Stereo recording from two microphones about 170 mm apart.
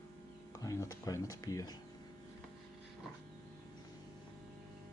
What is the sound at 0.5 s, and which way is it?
Speech, 20° left (ahead or behind).